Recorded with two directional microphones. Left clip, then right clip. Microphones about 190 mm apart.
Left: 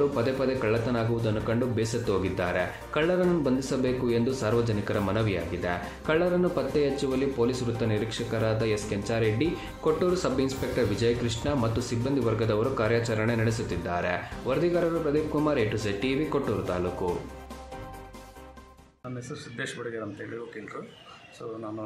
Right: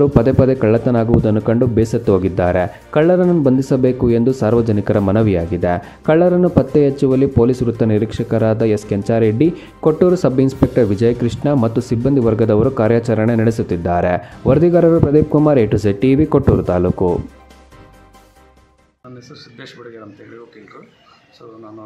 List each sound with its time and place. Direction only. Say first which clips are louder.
0.0 s speech: right 13 dB; 45° right (ahead or behind)